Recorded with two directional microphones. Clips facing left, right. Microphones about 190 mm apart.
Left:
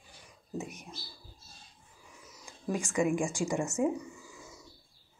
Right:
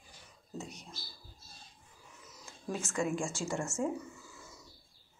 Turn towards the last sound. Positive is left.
turn(degrees=15)  # may be behind; listen again after turning